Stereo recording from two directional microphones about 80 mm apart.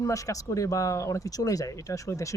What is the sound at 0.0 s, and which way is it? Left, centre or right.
Speech, left.